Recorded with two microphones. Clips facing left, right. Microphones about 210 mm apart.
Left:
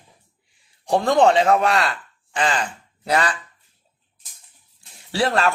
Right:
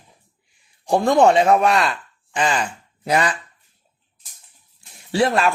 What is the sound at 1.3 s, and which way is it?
Speech, 30° right (ahead or behind).